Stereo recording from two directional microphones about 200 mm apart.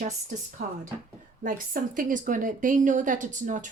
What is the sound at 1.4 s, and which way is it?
A woman's voice, 45° right (ahead or behind).